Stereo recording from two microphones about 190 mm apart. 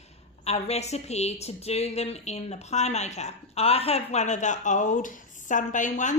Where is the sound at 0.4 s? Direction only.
35° left (ahead or behind).